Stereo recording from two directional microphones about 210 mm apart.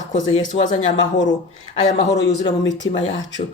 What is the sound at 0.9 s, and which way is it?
Speech, 65° left (ahead or behind).